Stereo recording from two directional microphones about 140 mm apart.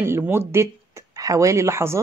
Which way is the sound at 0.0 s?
15° right (ahead or behind).